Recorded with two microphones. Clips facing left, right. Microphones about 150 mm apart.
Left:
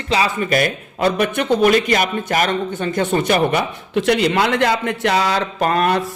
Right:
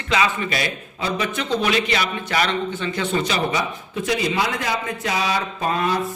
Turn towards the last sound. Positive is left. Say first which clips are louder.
# left 5 dB
turn(degrees=65)  # may be behind; listen again after turning